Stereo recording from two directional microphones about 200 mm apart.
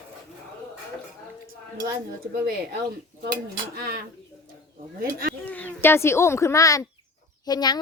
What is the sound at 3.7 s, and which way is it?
Speech, 50° right (ahead or behind).